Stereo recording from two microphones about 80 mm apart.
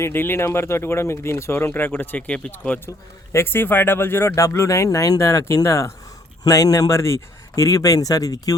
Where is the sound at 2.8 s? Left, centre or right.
Left.